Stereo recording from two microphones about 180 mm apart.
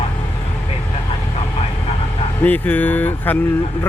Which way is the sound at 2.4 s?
10° left (ahead or behind).